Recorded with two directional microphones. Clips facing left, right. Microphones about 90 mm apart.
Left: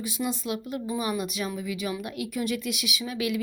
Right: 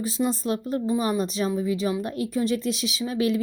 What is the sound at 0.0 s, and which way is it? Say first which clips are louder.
A woman's voice: right 5 dB; 35° right (ahead or behind).